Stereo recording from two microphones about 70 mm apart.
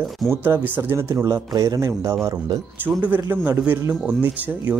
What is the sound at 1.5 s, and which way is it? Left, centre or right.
Speech, right.